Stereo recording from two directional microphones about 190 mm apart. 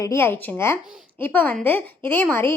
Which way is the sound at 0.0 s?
15° left (ahead or behind).